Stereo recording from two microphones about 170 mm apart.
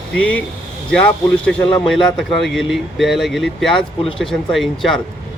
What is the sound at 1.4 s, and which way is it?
Speech, 5° left (ahead or behind).